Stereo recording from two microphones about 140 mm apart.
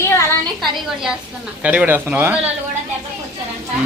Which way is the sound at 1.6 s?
10° right (ahead or behind).